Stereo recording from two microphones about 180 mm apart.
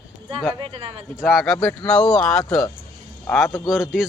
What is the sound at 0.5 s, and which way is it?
Speech, 30° right (ahead or behind).